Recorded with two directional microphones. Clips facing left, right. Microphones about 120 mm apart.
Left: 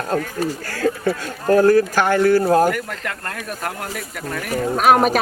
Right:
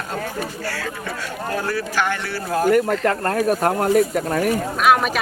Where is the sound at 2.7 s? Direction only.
40° right (ahead or behind).